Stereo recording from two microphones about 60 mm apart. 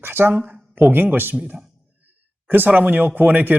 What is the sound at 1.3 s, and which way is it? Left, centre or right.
Speech, right.